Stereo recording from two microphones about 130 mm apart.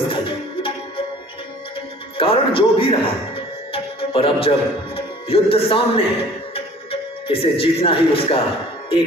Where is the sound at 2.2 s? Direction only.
45° left (ahead or behind).